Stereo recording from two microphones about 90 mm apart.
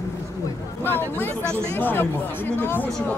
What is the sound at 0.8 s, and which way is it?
Speech, 25° left (ahead or behind).